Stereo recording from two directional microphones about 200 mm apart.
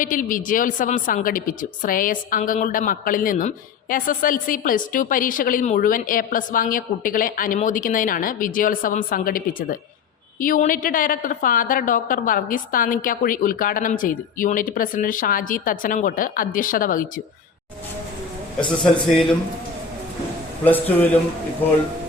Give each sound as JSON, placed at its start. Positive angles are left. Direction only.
{"t": 0.0, "sound": "a woman's voice", "side_deg": 40}
{"t": 18.6, "sound": "a man's voice", "side_deg": 25}
{"t": 20.7, "sound": "a man's voice", "side_deg": 10}